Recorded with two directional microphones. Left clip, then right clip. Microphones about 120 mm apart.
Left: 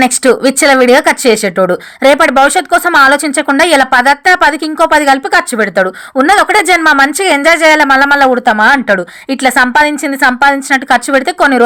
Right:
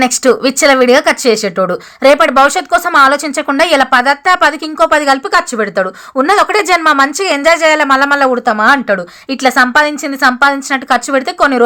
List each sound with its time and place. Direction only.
0.0 s speech: 30° left (ahead or behind)